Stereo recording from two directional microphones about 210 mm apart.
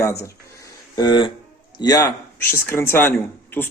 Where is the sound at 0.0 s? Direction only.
15° left (ahead or behind).